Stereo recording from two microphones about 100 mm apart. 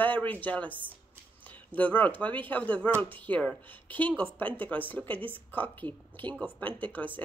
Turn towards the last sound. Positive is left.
turn(degrees=15)  # may be behind; listen again after turning